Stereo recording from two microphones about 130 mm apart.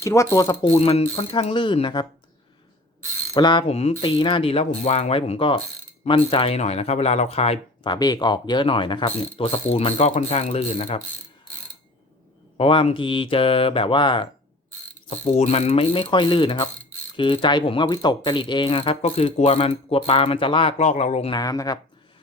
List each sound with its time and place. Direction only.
0.0 s speech: 25° left (ahead or behind)
0.8 s speech: 55° left (ahead or behind)
3.3 s speech: 35° left (ahead or behind)
3.7 s speech: 50° left (ahead or behind)
4.2 s speech: 40° left (ahead or behind)
7.9 s speech: 30° left (ahead or behind); by 11.0 s 55° left (ahead or behind)
12.5 s speech: 45° left (ahead or behind)
15.3 s speech: 55° left (ahead or behind)
20.7 s speech: 60° left (ahead or behind)
21.2 s speech: 30° left (ahead or behind)